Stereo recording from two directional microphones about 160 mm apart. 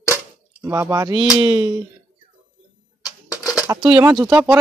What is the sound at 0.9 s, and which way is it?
Speech, 25° right (ahead or behind).